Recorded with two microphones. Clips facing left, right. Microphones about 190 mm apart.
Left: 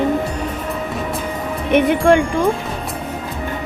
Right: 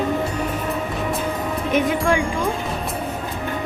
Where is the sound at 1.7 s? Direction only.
65° left (ahead or behind).